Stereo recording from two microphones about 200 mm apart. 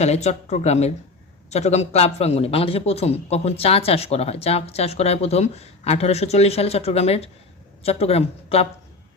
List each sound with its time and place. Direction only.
0.0 s speech: 35° left (ahead or behind)